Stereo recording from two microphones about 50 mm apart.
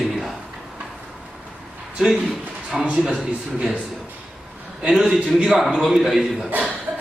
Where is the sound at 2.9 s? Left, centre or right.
Centre.